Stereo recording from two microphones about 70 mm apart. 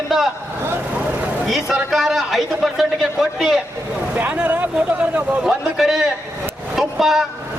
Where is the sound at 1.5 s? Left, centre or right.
Centre.